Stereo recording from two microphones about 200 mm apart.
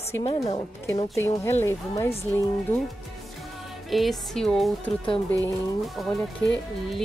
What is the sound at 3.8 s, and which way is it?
Speech, centre (ahead or behind).